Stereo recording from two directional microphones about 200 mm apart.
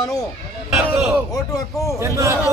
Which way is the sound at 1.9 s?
15° right (ahead or behind).